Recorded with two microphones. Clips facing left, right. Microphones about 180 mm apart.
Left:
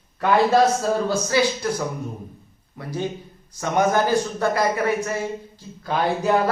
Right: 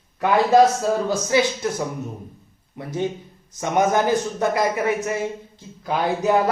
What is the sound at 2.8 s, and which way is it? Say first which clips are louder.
A man's voice: right 2 dB; 20° right (ahead or behind).